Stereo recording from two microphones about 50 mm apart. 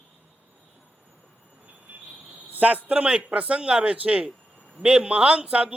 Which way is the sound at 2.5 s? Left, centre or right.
Right.